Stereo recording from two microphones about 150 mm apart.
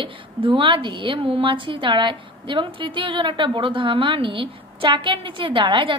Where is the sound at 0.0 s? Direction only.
35° right (ahead or behind).